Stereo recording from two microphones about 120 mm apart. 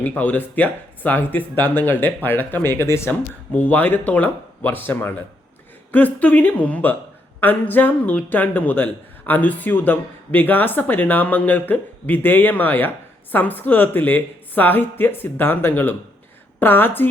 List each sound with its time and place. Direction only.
0.0 s speech: 15° left (ahead or behind)